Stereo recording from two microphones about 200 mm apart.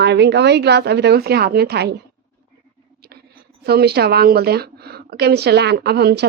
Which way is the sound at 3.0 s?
50° right (ahead or behind).